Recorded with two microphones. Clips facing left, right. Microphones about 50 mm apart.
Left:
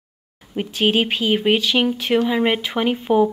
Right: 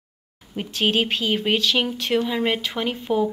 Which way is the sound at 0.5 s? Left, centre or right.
Centre.